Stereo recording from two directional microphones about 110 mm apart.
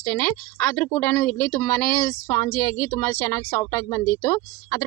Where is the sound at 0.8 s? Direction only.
15° left (ahead or behind).